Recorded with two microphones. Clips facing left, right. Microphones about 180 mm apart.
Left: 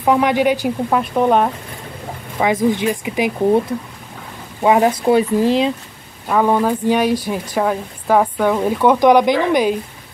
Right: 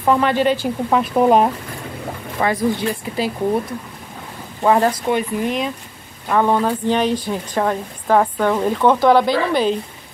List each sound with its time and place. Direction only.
0.0 s speech: 15° left (ahead or behind)
0.8 s speech: centre (ahead or behind)
2.3 s speech: 15° left (ahead or behind)
4.6 s speech: 15° left (ahead or behind)
5.0 s speech: 30° left (ahead or behind)
6.2 s speech: 5° left (ahead or behind)